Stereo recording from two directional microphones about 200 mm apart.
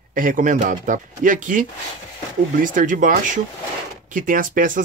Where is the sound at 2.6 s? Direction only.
40° right (ahead or behind).